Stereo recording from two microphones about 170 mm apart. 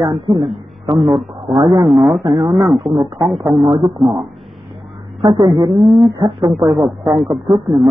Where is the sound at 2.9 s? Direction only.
15° right (ahead or behind).